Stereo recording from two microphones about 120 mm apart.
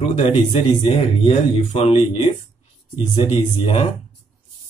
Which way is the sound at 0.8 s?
60° left (ahead or behind).